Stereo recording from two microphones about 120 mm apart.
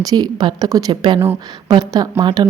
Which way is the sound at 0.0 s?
35° right (ahead or behind).